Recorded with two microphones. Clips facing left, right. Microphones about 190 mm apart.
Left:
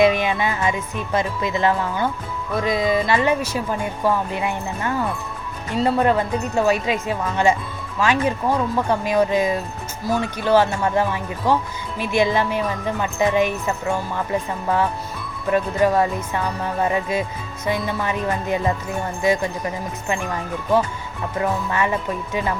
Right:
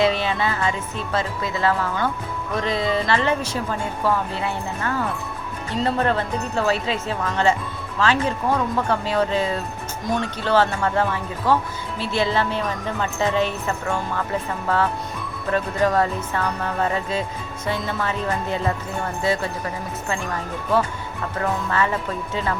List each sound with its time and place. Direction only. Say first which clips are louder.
0.0 s speech: left 3 dB; 15° left (ahead or behind)
15.4 s speech: left 3 dB; 15° left (ahead or behind)
21.3 s speech: left 1 dB; 15° left (ahead or behind)